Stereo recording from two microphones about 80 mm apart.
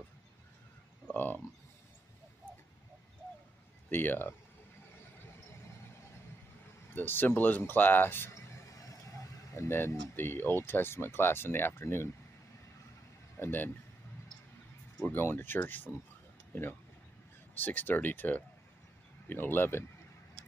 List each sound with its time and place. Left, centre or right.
1.1 s a sound: left
3.9 s speech: left
6.9 s speech: left
13.4 s a man's voice: left
15.0 s speech: centre
17.6 s speech: left